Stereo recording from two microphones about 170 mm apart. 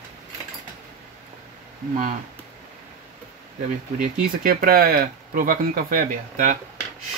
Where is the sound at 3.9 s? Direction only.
55° right (ahead or behind).